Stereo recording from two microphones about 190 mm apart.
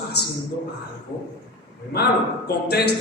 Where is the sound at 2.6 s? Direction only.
60° left (ahead or behind).